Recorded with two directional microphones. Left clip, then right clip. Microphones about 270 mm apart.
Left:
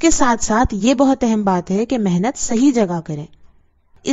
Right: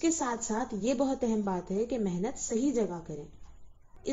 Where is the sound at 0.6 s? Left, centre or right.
Left.